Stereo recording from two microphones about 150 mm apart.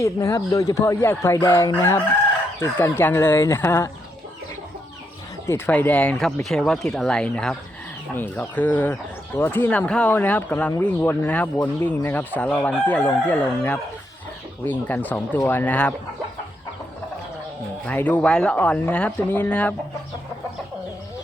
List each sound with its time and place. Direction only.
0.0 s speech: 20° left (ahead or behind)
2.6 s chicken: 15° left (ahead or behind)
5.5 s speech: 15° left (ahead or behind)
8.1 s chicken: 10° left (ahead or behind)
17.8 s chicken: 10° left (ahead or behind)